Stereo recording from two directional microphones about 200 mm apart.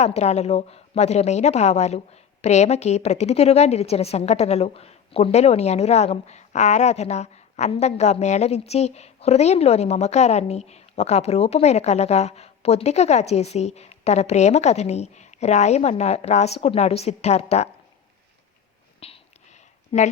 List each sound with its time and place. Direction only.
0.0 s a woman's voice: 35° left (ahead or behind)
18.9 s a sound: 30° left (ahead or behind)
19.9 s a woman's voice: 30° left (ahead or behind)